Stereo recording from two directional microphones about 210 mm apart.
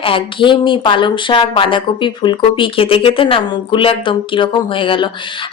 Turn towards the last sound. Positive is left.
turn(degrees=25)  # may be behind; listen again after turning